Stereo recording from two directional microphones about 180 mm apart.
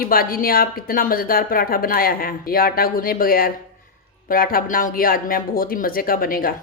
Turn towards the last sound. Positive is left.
turn(degrees=55)  # may be behind; listen again after turning